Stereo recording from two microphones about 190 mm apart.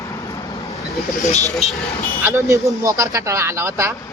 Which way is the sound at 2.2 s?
15° right (ahead or behind).